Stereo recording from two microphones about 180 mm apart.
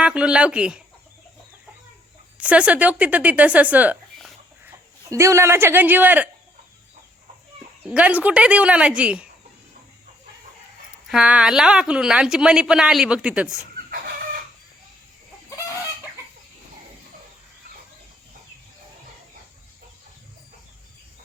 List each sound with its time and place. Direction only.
0.0 s a woman's voice: 5° right (ahead or behind)
2.4 s a man's voice: 5° right (ahead or behind)
7.9 s speech: 5° right (ahead or behind)
11.1 s a woman's voice: 5° right (ahead or behind)
15.4 s chicken: 15° left (ahead or behind)